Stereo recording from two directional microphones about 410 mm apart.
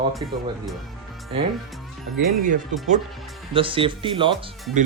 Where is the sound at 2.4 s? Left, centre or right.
Centre.